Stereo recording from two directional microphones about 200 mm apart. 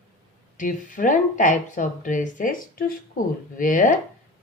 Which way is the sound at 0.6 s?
40° left (ahead or behind).